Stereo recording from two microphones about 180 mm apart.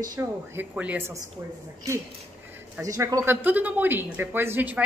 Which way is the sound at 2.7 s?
15° right (ahead or behind).